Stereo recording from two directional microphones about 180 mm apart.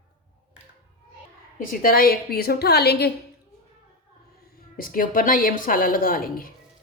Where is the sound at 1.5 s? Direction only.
50° left (ahead or behind).